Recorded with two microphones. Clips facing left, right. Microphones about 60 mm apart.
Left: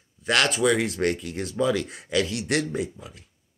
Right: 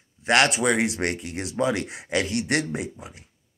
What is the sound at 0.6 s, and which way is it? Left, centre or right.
Speech, right.